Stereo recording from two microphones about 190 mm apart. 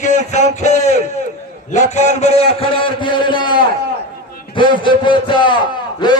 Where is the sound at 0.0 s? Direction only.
40° left (ahead or behind).